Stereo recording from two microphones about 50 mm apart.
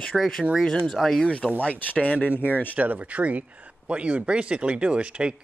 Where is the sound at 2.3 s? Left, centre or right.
Left.